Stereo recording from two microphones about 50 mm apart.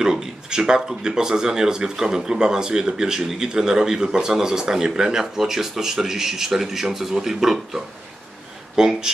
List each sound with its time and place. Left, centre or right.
0.0 s speech: centre